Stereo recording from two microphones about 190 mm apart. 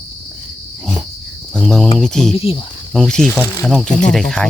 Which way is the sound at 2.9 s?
Centre (ahead or behind).